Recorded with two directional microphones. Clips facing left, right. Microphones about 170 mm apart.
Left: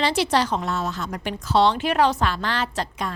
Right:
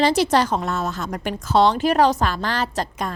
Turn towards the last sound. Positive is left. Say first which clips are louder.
# right 2 dB
turn(degrees=-45)  # may be behind; listen again after turning